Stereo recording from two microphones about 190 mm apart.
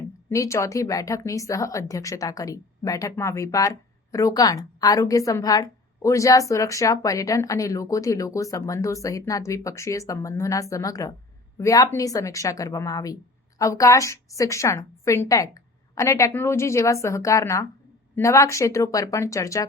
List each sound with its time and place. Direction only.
0.3 s speech: 15° left (ahead or behind)